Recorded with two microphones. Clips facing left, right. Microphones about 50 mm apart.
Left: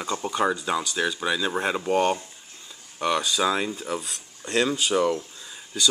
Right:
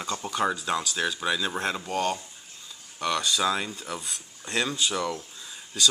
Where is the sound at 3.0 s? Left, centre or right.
Centre.